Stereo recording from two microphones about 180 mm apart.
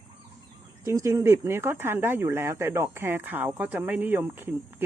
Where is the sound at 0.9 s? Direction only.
15° right (ahead or behind).